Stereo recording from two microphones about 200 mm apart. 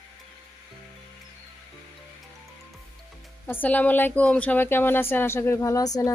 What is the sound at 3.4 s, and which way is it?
Speech, 10° left (ahead or behind).